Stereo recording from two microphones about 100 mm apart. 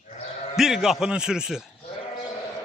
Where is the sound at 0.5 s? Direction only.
5° right (ahead or behind).